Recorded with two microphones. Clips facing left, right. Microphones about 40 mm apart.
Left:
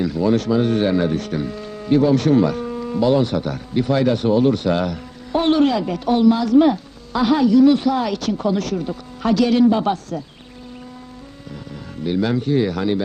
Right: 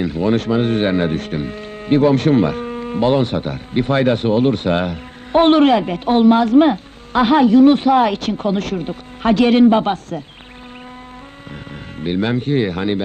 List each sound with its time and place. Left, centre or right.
0.0 s speech: right
11.9 s speech: right